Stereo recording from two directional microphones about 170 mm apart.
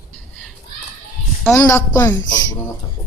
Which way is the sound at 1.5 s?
15° left (ahead or behind).